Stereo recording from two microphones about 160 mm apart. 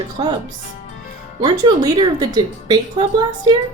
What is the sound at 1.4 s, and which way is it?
A woman's voice, 30° right (ahead or behind).